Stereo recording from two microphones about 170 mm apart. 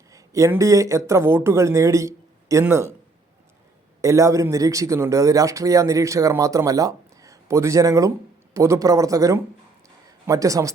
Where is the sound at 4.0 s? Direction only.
15° right (ahead or behind).